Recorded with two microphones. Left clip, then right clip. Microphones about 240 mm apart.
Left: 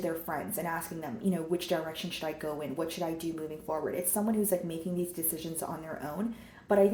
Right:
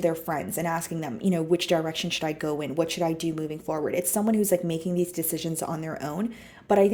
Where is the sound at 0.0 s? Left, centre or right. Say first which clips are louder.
Right 8 dB; right.